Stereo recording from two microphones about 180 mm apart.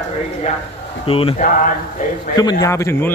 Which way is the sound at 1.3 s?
50° left (ahead or behind).